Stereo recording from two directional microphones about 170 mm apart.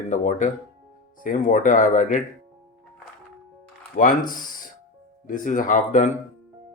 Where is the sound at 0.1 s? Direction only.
45° left (ahead or behind).